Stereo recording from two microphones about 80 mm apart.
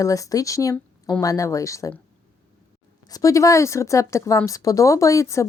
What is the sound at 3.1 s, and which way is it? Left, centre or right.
Speech, left.